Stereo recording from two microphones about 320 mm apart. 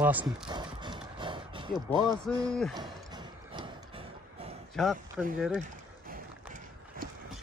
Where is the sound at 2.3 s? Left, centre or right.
Centre.